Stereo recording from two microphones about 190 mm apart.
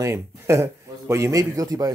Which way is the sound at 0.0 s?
15° right (ahead or behind).